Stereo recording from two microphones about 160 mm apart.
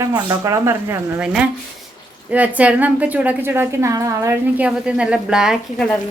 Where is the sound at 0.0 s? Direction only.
20° right (ahead or behind).